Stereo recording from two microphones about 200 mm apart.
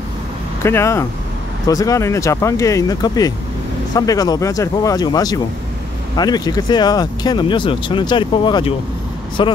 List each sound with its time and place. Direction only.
0.6 s speech: 10° left (ahead or behind)